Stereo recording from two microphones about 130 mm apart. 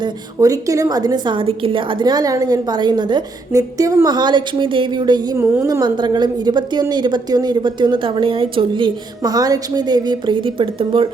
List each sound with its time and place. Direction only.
0.3 s a woman's voice: 25° right (ahead or behind)
5.4 s a woman's voice: 25° right (ahead or behind); by 11.1 s 40° right (ahead or behind)